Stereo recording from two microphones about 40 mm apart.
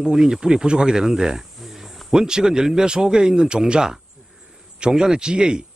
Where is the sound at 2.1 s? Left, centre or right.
Centre.